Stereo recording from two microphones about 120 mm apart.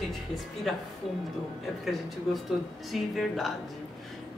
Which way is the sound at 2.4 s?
Centre (ahead or behind).